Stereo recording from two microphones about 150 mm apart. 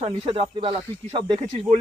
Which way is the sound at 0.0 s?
35° right (ahead or behind).